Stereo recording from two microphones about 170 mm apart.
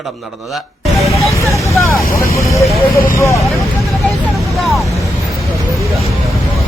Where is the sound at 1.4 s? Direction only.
15° left (ahead or behind).